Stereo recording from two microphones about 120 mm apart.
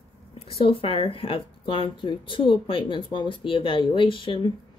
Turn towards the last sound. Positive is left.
turn(degrees=45)  # may be behind; listen again after turning